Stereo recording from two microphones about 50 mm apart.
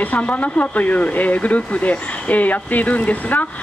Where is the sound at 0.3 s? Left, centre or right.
Left.